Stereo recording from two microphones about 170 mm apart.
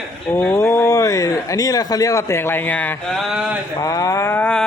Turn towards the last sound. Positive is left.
turn(degrees=5)  # may be behind; listen again after turning